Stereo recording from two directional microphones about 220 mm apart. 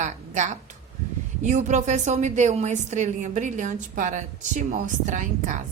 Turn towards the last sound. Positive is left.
turn(degrees=-35)  # may be behind; listen again after turning